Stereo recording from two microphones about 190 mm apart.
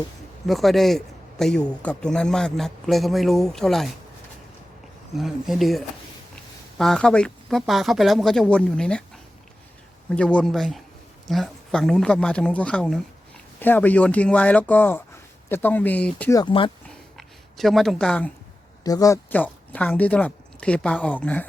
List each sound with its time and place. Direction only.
0.4 s speech: centre (ahead or behind)
5.1 s speech: centre (ahead or behind)
10.1 s speech: 5° left (ahead or behind)
16.3 s speech: 25° left (ahead or behind)
17.2 s speech: centre (ahead or behind)
18.8 s speech: 20° left (ahead or behind)